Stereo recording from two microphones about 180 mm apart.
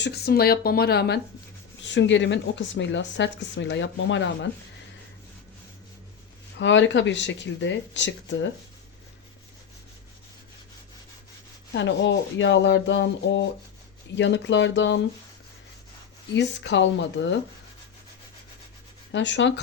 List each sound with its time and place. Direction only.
0.0 s speech: 65° left (ahead or behind)
1.8 s speech: 85° left
6.6 s speech: 90° left
11.7 s speech: 80° left
16.3 s speech: 75° left (ahead or behind)
19.1 s speech: 85° left